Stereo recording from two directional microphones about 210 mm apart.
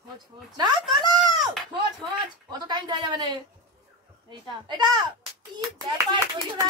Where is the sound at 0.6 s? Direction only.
20° right (ahead or behind).